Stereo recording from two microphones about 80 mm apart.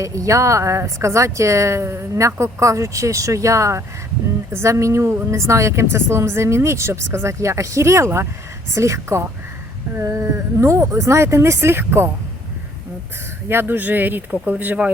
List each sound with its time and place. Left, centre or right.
0.0 s speech: right
13.5 s speech: right